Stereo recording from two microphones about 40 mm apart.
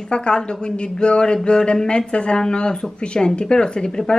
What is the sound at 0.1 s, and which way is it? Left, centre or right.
Speech, left.